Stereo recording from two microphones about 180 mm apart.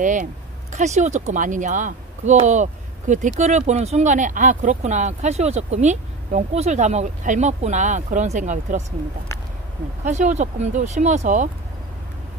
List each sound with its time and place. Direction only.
0.0 s speech: 45° right (ahead or behind)
10.0 s speech: 40° right (ahead or behind)